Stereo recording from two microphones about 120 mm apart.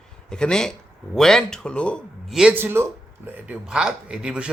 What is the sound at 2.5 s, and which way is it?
Speech, 20° right (ahead or behind).